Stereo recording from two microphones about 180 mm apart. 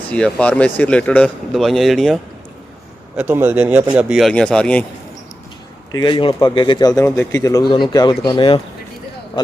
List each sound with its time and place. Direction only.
0.1 s a man's voice: 5° left (ahead or behind)
3.2 s a man's voice: 10° right (ahead or behind); by 4.9 s 5° left (ahead or behind)
5.9 s speech: 25° left (ahead or behind)